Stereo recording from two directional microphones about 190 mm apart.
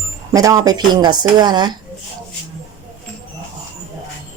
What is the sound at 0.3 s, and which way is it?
Speech, 20° right (ahead or behind).